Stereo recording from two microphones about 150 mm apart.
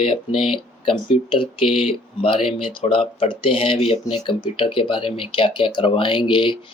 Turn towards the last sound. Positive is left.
turn(degrees=30)  # may be behind; listen again after turning